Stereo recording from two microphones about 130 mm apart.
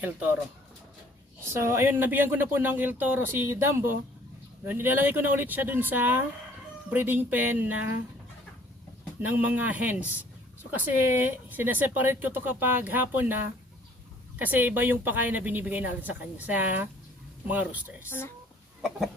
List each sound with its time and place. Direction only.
1.5 s speech: 20° right (ahead or behind)
9.2 s speech: 15° right (ahead or behind)
18.8 s chicken: centre (ahead or behind)